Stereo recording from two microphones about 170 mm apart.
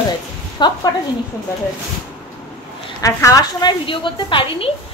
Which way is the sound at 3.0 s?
20° left (ahead or behind).